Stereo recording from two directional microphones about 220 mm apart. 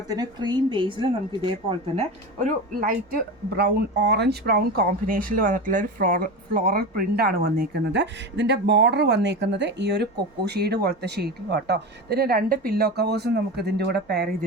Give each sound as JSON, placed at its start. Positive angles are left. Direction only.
{"t": 0.1, "sound": "a woman's voice", "side_deg": -20}
{"t": 2.0, "sound": "speech", "side_deg": -35}